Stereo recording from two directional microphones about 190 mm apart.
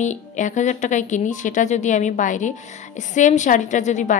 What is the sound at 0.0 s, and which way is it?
A woman's voice, 40° left (ahead or behind).